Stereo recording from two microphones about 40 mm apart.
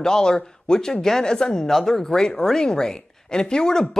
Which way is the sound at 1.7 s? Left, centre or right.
Centre.